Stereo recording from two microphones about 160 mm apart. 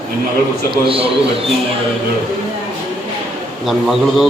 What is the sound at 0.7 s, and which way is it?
Speech, 35° right (ahead or behind).